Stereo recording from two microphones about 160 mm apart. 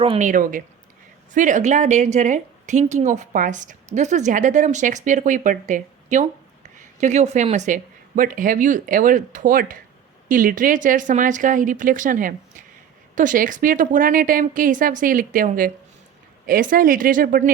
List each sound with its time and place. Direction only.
0.2 s a woman's voice: 55° right (ahead or behind)